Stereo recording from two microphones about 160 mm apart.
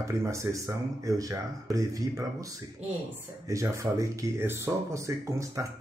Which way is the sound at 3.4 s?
20° right (ahead or behind).